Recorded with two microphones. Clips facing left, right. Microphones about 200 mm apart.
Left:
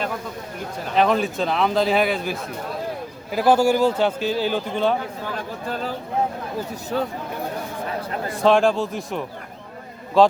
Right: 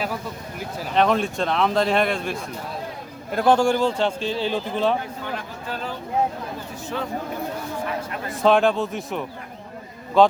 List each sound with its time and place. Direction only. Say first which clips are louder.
0.9 s speech: left 1 dB; centre (ahead or behind)
6.9 s speech: left 5 dB; 40° left (ahead or behind)
8.4 s speech: left 1 dB; centre (ahead or behind)